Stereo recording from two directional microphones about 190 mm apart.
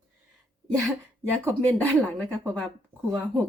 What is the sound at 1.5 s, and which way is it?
Speech, 10° left (ahead or behind).